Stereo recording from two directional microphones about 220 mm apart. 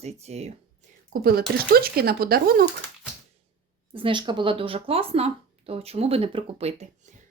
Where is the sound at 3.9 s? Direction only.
25° right (ahead or behind).